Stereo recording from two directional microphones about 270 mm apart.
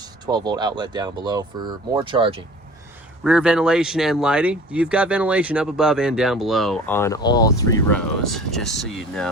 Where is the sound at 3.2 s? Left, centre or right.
Centre.